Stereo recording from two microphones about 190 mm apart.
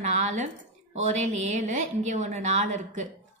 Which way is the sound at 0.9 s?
40° right (ahead or behind).